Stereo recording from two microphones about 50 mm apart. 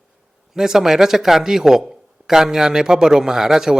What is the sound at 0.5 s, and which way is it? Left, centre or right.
Speech, centre.